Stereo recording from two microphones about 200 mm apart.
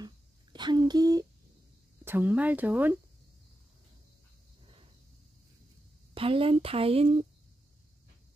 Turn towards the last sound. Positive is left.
turn(degrees=-30)  # may be behind; listen again after turning